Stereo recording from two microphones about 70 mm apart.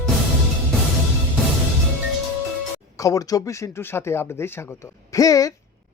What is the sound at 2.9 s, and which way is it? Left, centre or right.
Speech, left.